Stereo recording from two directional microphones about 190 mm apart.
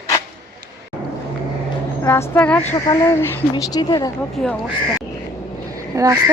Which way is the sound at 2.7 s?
20° left (ahead or behind).